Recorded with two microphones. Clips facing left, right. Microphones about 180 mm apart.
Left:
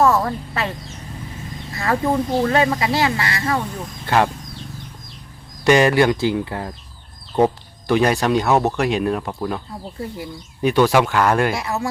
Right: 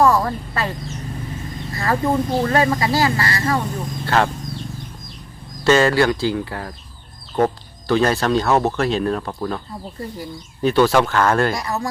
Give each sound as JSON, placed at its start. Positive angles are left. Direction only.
{"t": 0.0, "sound": "speech", "side_deg": 0}
{"t": 1.7, "sound": "speech", "side_deg": 0}
{"t": 4.0, "sound": "speech", "side_deg": 15}
{"t": 5.6, "sound": "speech", "side_deg": 15}
{"t": 11.5, "sound": "speech", "side_deg": 0}